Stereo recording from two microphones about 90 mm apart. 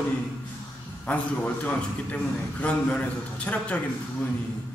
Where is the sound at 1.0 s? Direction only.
15° left (ahead or behind).